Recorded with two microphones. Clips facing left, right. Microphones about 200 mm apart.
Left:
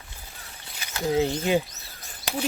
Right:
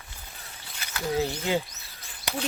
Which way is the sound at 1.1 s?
20° left (ahead or behind).